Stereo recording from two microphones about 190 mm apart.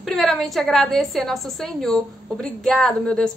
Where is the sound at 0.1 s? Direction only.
Centre (ahead or behind).